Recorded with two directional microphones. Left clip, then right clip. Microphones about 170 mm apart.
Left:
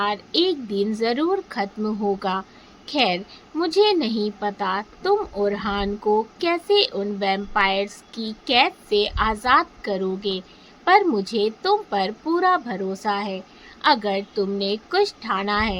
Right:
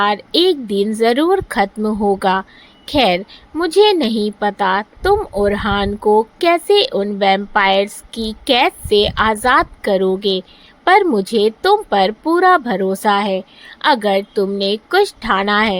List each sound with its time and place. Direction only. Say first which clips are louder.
0.0 s speech: right 7 dB; 45° right (ahead or behind)